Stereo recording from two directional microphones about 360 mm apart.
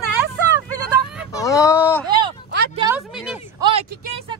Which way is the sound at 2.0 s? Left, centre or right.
Centre.